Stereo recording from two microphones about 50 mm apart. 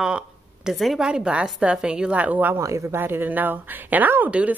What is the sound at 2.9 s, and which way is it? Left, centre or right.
Speech, right.